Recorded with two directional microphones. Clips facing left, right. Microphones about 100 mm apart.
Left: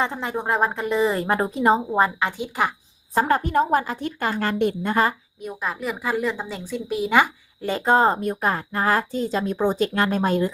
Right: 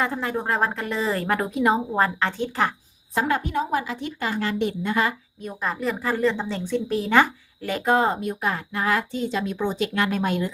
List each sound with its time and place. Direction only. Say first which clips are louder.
0.0 s a woman's voice: even; 20° left (ahead or behind)
1.9 s a woman's voice: left 2 dB; 15° left (ahead or behind)
3.2 s a woman's voice: left 4 dB; 40° left (ahead or behind)
5.4 s a woman's voice: right 1 dB; 5° left (ahead or behind)
7.6 s a woman's voice: left 2 dB; 30° left (ahead or behind)